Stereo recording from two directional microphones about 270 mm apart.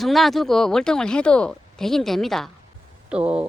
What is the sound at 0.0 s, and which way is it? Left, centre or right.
Speech, centre.